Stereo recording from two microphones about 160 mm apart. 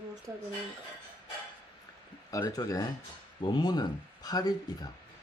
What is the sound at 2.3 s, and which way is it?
Speech, 25° left (ahead or behind).